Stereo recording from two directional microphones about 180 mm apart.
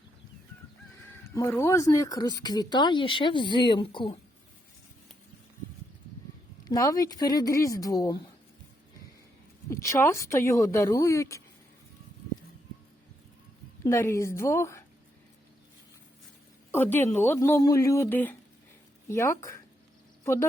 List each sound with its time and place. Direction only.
1.0 s speech: 15° left (ahead or behind)
6.7 s speech: 20° left (ahead or behind)
9.6 s speech: 15° left (ahead or behind)
13.8 s speech: 15° left (ahead or behind)
16.7 s speech: 10° left (ahead or behind)